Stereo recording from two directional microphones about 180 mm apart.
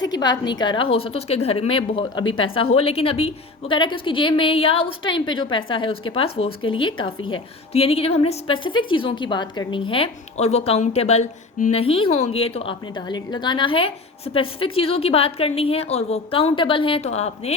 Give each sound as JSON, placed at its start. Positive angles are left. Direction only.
{"t": 0.0, "sound": "a woman's voice", "side_deg": 20}